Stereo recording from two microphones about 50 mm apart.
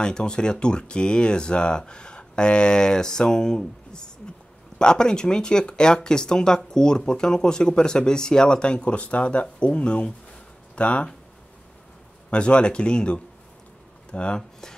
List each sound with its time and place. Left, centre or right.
0.0 s speech: centre
12.3 s speech: left